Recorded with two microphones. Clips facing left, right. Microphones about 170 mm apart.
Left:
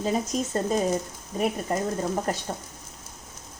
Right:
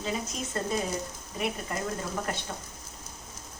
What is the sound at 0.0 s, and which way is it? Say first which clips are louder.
Speech: left 7 dB; 40° left (ahead or behind).